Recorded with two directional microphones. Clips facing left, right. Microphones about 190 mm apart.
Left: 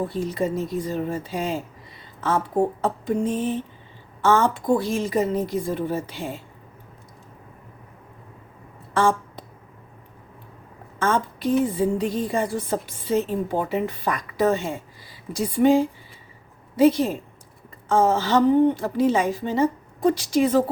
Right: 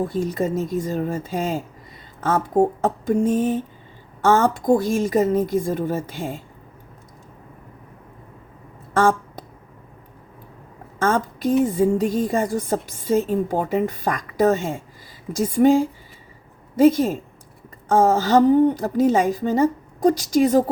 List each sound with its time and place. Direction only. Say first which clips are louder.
0.1 s a woman's voice: right 2 dB; 45° right (ahead or behind)
2.8 s a woman's voice: right 4 dB; 45° right (ahead or behind)
8.9 s a sound: right 2 dB; 45° right (ahead or behind)
11.0 s a woman's voice: right 2 dB; 45° right (ahead or behind)